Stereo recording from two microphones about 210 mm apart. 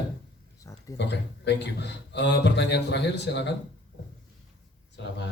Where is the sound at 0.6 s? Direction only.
15° left (ahead or behind).